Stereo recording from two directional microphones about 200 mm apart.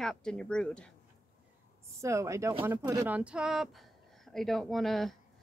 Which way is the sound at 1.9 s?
15° right (ahead or behind).